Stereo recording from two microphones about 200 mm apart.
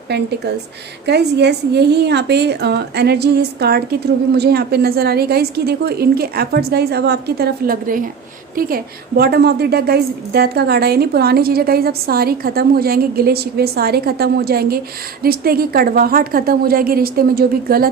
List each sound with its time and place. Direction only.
0.1 s a woman's voice: 55° right (ahead or behind)